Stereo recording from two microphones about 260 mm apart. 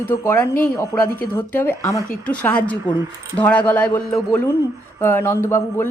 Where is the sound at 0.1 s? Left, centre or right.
Centre.